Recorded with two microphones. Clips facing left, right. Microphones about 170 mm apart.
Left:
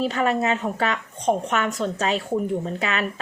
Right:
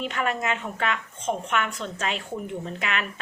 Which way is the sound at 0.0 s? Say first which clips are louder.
Left 6 dB; 35° left (ahead or behind).